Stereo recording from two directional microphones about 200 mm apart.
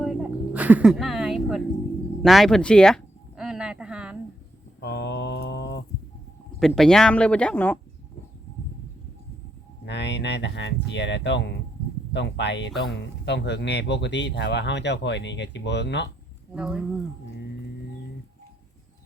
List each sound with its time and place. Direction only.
0.0 s a sound: 5° right (ahead or behind)
4.8 s mantra: 60° left (ahead or behind)
6.6 s speech: centre (ahead or behind)
9.8 s speech: 60° left (ahead or behind)
16.6 s speech: 5° right (ahead or behind)